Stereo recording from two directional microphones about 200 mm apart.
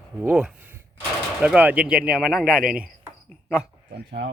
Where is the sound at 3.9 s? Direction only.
50° right (ahead or behind).